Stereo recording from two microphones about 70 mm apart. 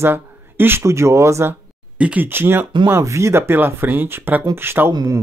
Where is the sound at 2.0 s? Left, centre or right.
Centre.